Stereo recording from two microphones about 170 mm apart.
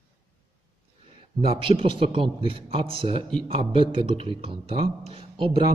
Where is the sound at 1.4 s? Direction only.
30° right (ahead or behind).